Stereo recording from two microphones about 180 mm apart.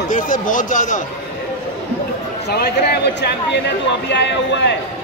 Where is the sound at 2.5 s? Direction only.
65° left (ahead or behind).